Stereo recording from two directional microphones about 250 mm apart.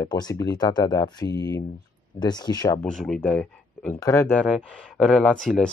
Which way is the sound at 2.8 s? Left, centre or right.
Centre.